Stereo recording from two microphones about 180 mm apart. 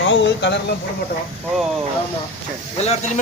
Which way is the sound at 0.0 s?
85° left.